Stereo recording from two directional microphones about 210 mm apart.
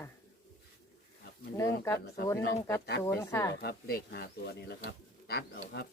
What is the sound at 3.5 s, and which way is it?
Speech, 50° left (ahead or behind).